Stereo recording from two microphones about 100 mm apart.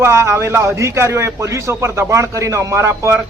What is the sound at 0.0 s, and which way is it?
A man's voice, 30° right (ahead or behind).